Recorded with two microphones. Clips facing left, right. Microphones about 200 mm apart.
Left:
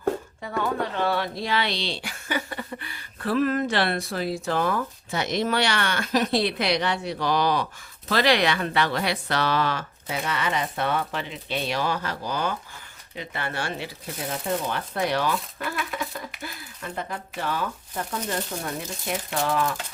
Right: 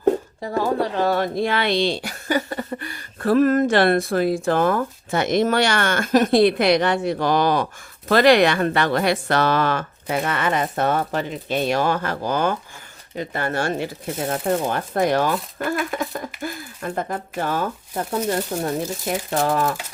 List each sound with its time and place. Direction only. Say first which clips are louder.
0.4 s speech: right 5 dB; 35° right (ahead or behind)